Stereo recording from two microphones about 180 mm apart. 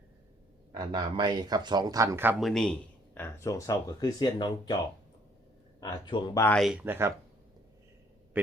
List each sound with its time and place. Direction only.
0.7 s speech: 25° right (ahead or behind)
2.4 s a man's voice: 5° left (ahead or behind)
3.2 s speech: 15° left (ahead or behind)
5.8 s speech: 25° left (ahead or behind)
6.5 s speech: centre (ahead or behind)